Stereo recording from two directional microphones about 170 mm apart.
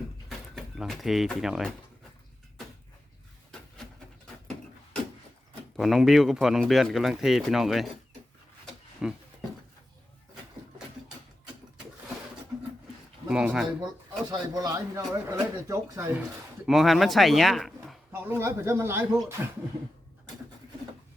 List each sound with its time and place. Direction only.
0.3 s speech: centre (ahead or behind)
5.7 s speech: centre (ahead or behind)
9.0 s speech: 5° right (ahead or behind)
13.2 s speech: 5° right (ahead or behind)
14.3 s speech: 25° right (ahead or behind)
16.6 s speech: centre (ahead or behind)
18.1 s speech: 15° right (ahead or behind)